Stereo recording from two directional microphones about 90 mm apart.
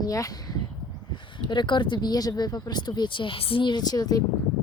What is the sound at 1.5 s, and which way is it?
Speech, 60° left (ahead or behind).